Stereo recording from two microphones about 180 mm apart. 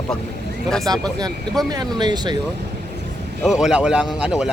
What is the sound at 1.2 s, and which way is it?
Speech, 20° right (ahead or behind).